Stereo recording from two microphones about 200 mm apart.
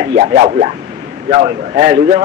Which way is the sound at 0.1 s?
35° right (ahead or behind).